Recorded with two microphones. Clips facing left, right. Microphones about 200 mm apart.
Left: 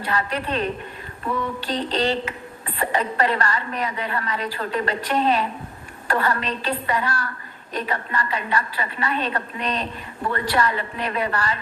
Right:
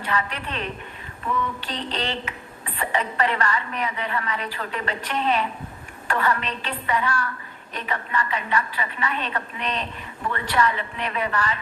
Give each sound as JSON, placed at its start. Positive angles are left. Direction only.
{"t": 0.0, "sound": "a woman's voice", "side_deg": 35}